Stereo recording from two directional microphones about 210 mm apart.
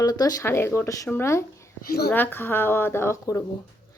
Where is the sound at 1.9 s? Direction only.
50° left (ahead or behind).